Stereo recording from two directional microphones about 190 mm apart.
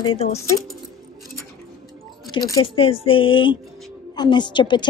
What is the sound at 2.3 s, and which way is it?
A woman's voice, 20° left (ahead or behind).